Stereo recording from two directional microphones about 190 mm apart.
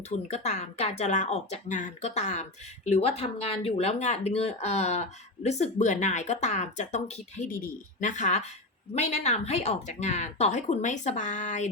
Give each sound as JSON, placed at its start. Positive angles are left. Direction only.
{"t": 0.3, "sound": "speech", "side_deg": 35}